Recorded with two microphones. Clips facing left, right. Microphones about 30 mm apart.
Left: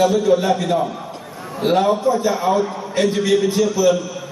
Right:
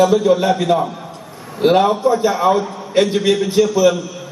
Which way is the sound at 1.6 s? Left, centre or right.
Right.